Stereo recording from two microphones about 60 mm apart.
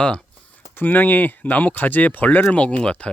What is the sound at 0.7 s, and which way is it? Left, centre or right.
Speech, left.